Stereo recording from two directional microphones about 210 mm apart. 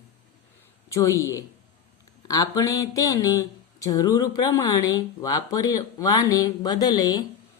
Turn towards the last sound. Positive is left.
turn(degrees=20)  # may be behind; listen again after turning